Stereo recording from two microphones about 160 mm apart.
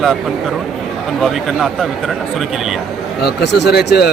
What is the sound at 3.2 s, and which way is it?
Speech, 90° left.